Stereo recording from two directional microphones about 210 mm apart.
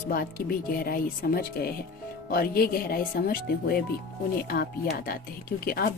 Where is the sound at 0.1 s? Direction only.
45° left (ahead or behind).